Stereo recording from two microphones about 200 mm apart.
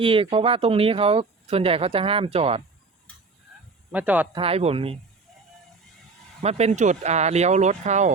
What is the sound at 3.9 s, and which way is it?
Speech, 5° right (ahead or behind).